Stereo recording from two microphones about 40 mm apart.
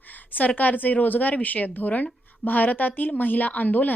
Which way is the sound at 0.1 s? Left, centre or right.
Left.